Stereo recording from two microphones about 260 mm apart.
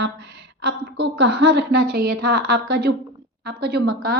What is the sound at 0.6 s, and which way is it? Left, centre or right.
A woman's voice, right.